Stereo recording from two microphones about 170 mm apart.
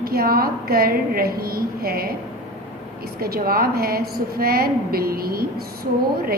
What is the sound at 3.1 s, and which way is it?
A woman's voice, 60° right (ahead or behind).